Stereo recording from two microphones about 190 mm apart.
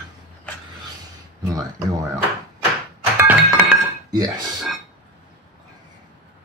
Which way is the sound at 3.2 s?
10° right (ahead or behind).